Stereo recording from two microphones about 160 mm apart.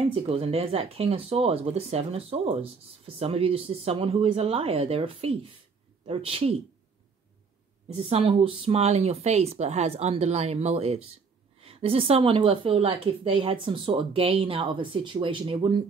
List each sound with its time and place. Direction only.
0.1 s a woman's voice: 35° right (ahead or behind)
7.9 s a woman's voice: 40° right (ahead or behind)